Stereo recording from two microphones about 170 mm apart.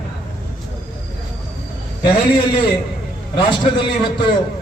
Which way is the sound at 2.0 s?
25° left (ahead or behind).